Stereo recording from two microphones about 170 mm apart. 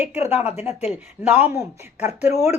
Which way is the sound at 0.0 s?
40° left (ahead or behind).